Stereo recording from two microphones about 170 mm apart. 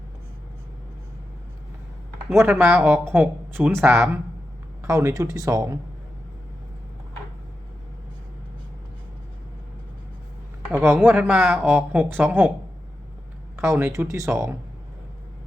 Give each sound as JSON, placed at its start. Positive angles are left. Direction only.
{"t": 2.3, "sound": "speech", "side_deg": -15}
{"t": 10.7, "sound": "speech", "side_deg": -10}
{"t": 13.6, "sound": "speech", "side_deg": -15}